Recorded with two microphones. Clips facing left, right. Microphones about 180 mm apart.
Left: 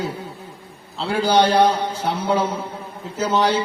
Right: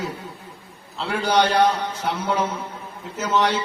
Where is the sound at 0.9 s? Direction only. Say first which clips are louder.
Left 3 dB; 30° left (ahead or behind).